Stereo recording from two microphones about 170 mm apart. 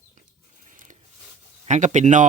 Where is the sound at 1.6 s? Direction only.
45° right (ahead or behind).